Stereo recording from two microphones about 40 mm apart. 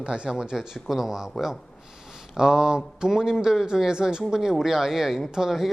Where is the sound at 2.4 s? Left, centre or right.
Centre.